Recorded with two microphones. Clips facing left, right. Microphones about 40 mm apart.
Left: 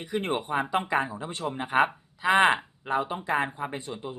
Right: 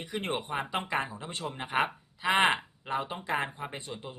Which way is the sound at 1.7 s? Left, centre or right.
Centre.